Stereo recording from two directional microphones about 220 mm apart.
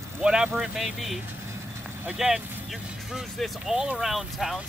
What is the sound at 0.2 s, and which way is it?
Speech, 5° right (ahead or behind).